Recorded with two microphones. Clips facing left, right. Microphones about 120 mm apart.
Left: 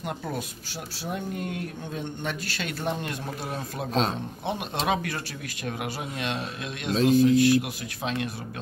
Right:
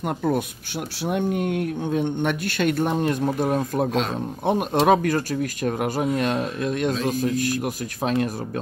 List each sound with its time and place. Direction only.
0.0 s speech: 55° right (ahead or behind)
1.0 s speech: 65° right (ahead or behind); by 8.3 s 45° right (ahead or behind)